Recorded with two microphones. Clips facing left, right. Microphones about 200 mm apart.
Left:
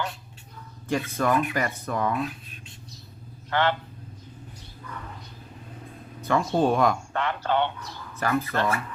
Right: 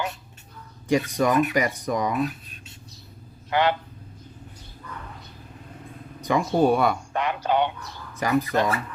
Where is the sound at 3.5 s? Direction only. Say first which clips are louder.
Right 2 dB; 15° right (ahead or behind).